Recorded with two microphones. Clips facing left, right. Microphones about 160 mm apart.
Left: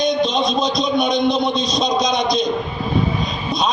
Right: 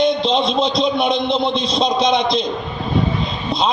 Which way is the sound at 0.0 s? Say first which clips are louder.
Right 2 dB; 30° right (ahead or behind).